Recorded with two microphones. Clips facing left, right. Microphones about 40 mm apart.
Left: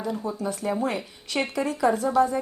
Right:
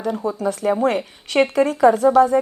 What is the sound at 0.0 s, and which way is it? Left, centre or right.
A woman's voice, right.